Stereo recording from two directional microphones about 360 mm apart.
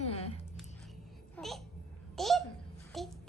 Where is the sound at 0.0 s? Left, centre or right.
Centre.